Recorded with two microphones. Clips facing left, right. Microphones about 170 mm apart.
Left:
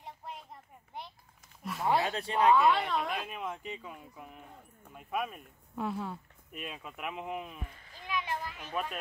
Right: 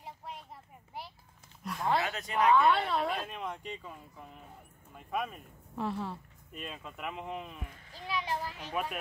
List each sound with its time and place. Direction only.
0.0 s a sound: centre (ahead or behind)
1.6 s speech: 5° left (ahead or behind)
2.0 s speech: 30° left (ahead or behind)
2.7 s speech: centre (ahead or behind)
7.9 s children playing: 35° right (ahead or behind)